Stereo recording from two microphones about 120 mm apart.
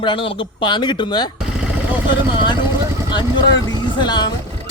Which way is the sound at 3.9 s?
40° left (ahead or behind).